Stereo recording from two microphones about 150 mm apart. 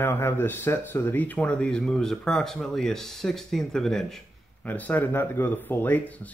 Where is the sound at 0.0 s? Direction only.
15° left (ahead or behind).